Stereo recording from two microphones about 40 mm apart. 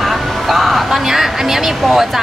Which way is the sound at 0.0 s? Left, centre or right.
Centre.